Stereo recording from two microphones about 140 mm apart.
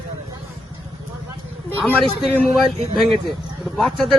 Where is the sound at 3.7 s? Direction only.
Centre (ahead or behind).